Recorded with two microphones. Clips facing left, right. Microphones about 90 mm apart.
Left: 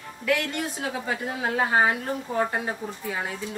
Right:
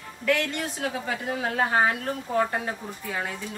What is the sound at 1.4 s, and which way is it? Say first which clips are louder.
Speech: left 1 dB; 20° left (ahead or behind).